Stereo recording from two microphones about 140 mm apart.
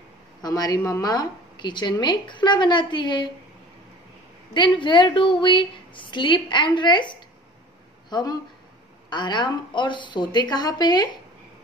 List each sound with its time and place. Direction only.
0.4 s a woman's voice: 30° left (ahead or behind)
4.6 s a woman's voice: 35° left (ahead or behind)